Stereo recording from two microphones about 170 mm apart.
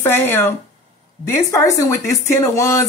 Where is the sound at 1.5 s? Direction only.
20° left (ahead or behind).